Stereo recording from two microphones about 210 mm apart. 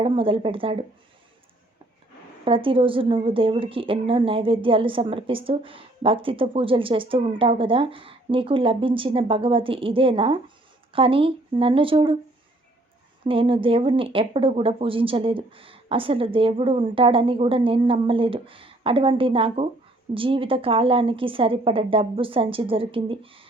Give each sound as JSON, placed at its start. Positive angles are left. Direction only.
{"t": 0.0, "sound": "a woman's voice", "side_deg": -25}
{"t": 2.4, "sound": "a woman's voice", "side_deg": -25}
{"t": 13.2, "sound": "a woman's voice", "side_deg": -25}